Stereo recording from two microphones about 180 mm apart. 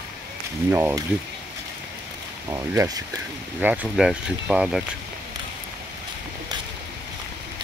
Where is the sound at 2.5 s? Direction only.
15° right (ahead or behind).